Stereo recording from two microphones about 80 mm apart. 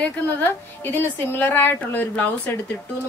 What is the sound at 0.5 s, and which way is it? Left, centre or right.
A woman's voice, left.